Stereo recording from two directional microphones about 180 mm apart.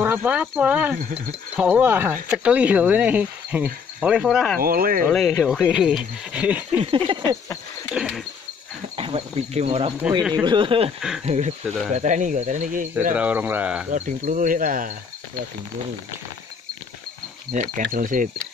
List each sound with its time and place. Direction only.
0.0 s cricket: 10° right (ahead or behind)
4.6 s speech: 55° right (ahead or behind)
5.4 s speech: centre (ahead or behind)
6.8 s a sound: 30° right (ahead or behind)
7.9 s speech: 5° right (ahead or behind)
8.9 s speech: 30° right (ahead or behind)
10.4 s a sound: 25° right (ahead or behind)
11.2 s cricket: 40° right (ahead or behind)
13.1 s cricket: 10° right (ahead or behind)
13.8 s cricket: 45° right (ahead or behind)
17.5 s cricket: 45° right (ahead or behind)